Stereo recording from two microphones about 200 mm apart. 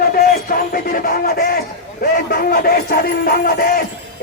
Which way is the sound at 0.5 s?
45° left (ahead or behind).